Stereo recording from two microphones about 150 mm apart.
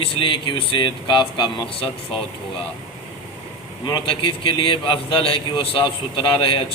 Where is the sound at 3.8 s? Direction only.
30° left (ahead or behind).